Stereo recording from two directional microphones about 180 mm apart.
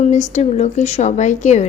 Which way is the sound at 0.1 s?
40° left (ahead or behind).